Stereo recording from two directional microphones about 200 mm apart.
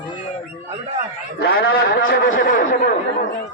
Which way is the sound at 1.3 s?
50° left (ahead or behind).